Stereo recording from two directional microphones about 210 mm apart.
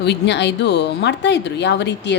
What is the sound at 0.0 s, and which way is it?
Speech, 55° left (ahead or behind).